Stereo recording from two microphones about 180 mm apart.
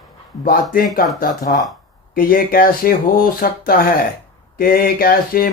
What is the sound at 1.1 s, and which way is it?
Speech, 55° left (ahead or behind).